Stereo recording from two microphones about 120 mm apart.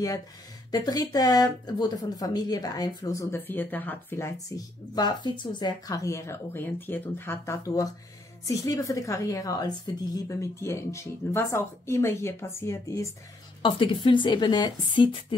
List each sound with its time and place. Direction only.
0.7 s speech: 35° left (ahead or behind); by 4.3 s 15° left (ahead or behind)
4.5 s speech: 30° left (ahead or behind)
13.6 s a woman's voice: 45° left (ahead or behind)